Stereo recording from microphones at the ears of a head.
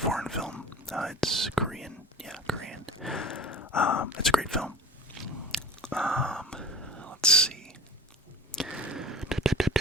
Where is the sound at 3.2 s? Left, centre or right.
Left.